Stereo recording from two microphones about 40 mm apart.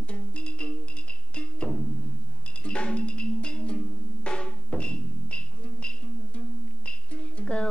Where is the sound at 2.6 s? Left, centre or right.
Left.